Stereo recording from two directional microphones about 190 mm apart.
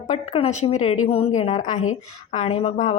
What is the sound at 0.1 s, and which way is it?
Speech, 35° left (ahead or behind).